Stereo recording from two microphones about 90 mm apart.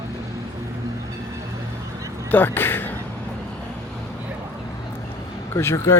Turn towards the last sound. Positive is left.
turn(degrees=30)  # may be behind; listen again after turning